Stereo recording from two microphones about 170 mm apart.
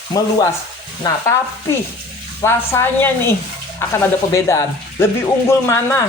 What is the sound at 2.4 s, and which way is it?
Speech, 15° left (ahead or behind).